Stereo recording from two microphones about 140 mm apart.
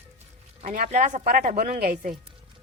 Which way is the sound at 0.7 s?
70° right (ahead or behind).